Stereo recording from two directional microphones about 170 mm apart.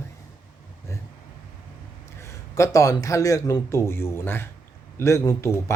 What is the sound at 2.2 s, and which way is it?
A man's voice, 15° left (ahead or behind).